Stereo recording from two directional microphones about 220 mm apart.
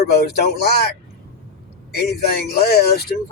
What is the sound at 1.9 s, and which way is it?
Speech, 45° left (ahead or behind).